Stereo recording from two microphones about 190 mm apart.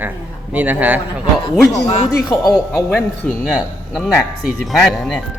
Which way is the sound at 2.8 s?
10° left (ahead or behind).